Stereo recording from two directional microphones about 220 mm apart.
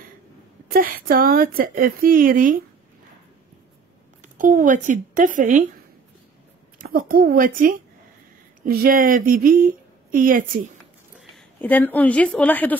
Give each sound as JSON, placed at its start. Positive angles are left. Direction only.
{"t": 0.7, "sound": "a woman's voice", "side_deg": -40}
{"t": 4.2, "sound": "speech", "side_deg": -35}
{"t": 6.8, "sound": "a woman's voice", "side_deg": -40}
{"t": 11.1, "sound": "a woman's voice", "side_deg": 5}